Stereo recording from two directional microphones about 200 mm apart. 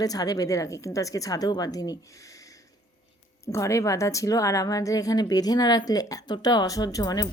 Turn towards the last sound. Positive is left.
turn(degrees=20)  # may be behind; listen again after turning